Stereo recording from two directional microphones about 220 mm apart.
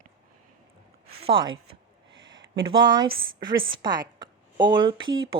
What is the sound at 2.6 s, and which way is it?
Speech, 20° right (ahead or behind).